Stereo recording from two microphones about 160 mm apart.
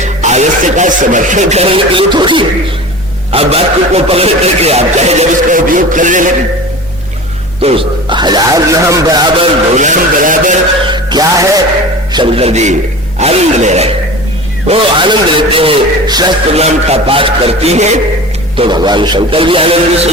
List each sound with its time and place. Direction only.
0.0 s speech: 45° right (ahead or behind)
7.6 s speech: 35° right (ahead or behind)
9.7 s speech: 50° right (ahead or behind)
10.8 s music: 25° right (ahead or behind)
12.1 s speech: 35° right (ahead or behind)
14.7 s speech: 30° right (ahead or behind)
16.5 s speech: 40° right (ahead or behind)
18.5 s speech: 30° right (ahead or behind)